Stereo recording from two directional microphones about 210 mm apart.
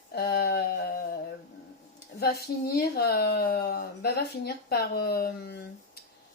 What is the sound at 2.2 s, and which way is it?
A woman's voice, 50° left (ahead or behind).